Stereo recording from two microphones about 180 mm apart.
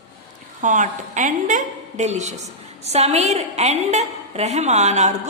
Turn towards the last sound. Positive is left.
turn(degrees=-40)  # may be behind; listen again after turning